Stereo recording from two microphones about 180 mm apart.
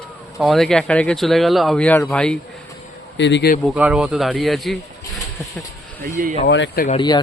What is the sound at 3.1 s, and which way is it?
Speech, 80° left.